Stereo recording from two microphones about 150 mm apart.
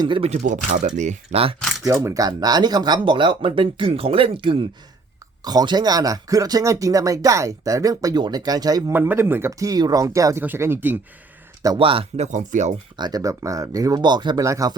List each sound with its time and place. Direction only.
0.0 s speech: 35° right (ahead or behind)
0.3 s speech: 55° right (ahead or behind)
1.5 s a sound: centre (ahead or behind)
1.8 s speech: 20° right (ahead or behind)
8.9 s speech: 15° right (ahead or behind)
11.6 s speech: 30° right (ahead or behind); by 12.8 s 50° right (ahead or behind)
13.0 s speech: 25° right (ahead or behind)